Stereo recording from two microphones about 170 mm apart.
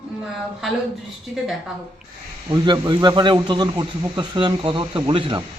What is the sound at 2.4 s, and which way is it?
A man's voice, 25° right (ahead or behind).